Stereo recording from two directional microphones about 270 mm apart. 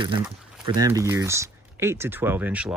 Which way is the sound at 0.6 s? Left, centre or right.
Centre.